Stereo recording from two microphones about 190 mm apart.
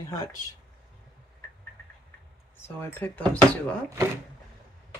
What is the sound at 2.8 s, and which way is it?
Speech, 10° left (ahead or behind).